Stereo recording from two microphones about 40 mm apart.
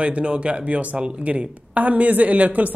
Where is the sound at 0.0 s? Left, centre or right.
Right.